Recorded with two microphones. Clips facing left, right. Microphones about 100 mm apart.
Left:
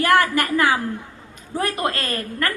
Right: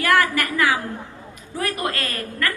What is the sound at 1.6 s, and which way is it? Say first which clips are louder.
Speech: left 2 dB; 30° left (ahead or behind).